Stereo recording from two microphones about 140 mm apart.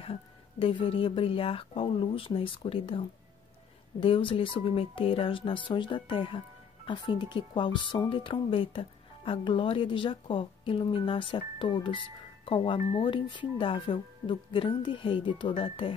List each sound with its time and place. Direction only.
0.0 s speech: 40° left (ahead or behind)